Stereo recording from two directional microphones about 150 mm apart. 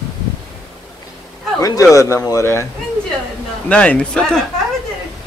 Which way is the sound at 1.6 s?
25° left (ahead or behind).